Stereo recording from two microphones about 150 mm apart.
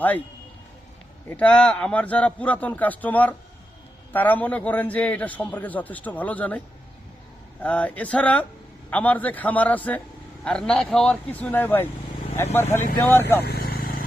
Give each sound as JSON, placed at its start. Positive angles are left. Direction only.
{"t": 1.3, "sound": "a man's voice", "side_deg": 10}
{"t": 7.6, "sound": "a man's voice", "side_deg": 10}
{"t": 13.0, "sound": "a man's voice", "side_deg": 15}
{"t": 13.4, "sound": "vehicle", "side_deg": 90}